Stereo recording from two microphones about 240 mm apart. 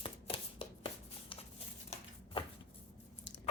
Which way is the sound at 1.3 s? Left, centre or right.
Left.